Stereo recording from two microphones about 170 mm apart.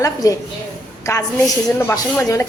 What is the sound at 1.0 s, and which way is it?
A woman's voice, 15° left (ahead or behind).